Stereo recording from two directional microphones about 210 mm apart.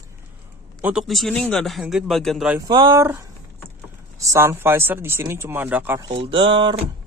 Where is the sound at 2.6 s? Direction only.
20° right (ahead or behind).